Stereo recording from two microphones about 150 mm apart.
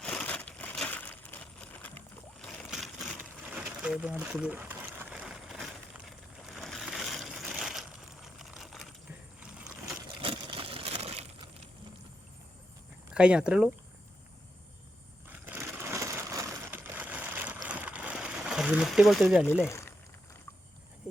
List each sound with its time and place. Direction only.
0.0 s crushing: 5° left (ahead or behind)
2.6 s a sound: centre (ahead or behind)
3.6 s sewing machine: 5° right (ahead or behind)
5.1 s vehicle: 5° right (ahead or behind)
10.2 s a sound: 35° right (ahead or behind)
13.1 s speech: 5° right (ahead or behind)
15.3 s sewing machine: 15° right (ahead or behind)
16.7 s a sound: 10° right (ahead or behind)
19.5 s speech: 15° left (ahead or behind)